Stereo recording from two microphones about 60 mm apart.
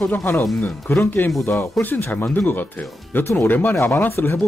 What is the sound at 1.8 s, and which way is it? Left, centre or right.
Speech, left.